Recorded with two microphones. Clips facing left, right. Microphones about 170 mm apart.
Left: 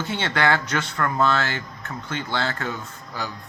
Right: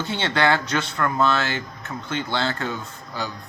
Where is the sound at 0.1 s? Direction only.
30° right (ahead or behind).